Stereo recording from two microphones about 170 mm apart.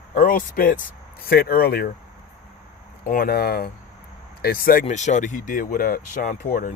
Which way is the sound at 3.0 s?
55° left (ahead or behind).